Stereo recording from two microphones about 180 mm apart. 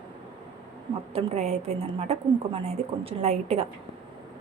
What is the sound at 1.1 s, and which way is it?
A woman's voice, 40° right (ahead or behind).